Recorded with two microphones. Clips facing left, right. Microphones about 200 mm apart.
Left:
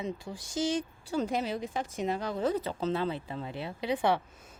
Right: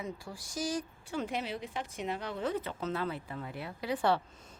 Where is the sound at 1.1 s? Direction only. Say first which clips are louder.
Left 5 dB; 40° left (ahead or behind).